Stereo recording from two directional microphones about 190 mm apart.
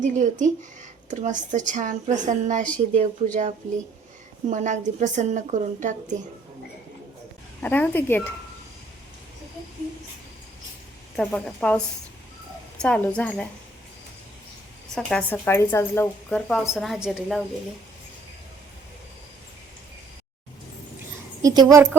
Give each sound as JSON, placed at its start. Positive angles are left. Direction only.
{"t": 0.0, "sound": "a woman's voice", "side_deg": -40}
{"t": 4.4, "sound": "a woman's voice", "side_deg": -40}
{"t": 7.6, "sound": "a woman's voice", "side_deg": 10}
{"t": 11.2, "sound": "a woman's voice", "side_deg": 5}
{"t": 12.8, "sound": "a woman's voice", "side_deg": 5}
{"t": 14.9, "sound": "a woman's voice", "side_deg": 5}
{"t": 16.5, "sound": "a woman's voice", "side_deg": 0}
{"t": 21.4, "sound": "speech", "side_deg": -20}